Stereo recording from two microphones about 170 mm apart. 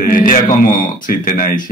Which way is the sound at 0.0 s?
55° left (ahead or behind).